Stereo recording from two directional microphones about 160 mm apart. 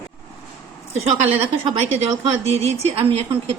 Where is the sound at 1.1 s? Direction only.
40° right (ahead or behind).